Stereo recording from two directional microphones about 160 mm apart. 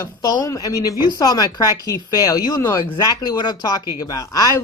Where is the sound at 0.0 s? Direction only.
25° left (ahead or behind).